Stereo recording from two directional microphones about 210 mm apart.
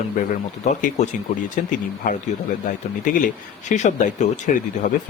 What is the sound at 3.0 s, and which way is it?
Speech, 40° left (ahead or behind).